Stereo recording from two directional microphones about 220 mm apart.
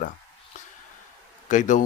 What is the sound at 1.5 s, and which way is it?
Speech, 35° left (ahead or behind).